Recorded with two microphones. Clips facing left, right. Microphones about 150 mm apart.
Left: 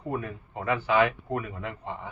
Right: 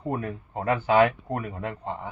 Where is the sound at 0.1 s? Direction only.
40° right (ahead or behind).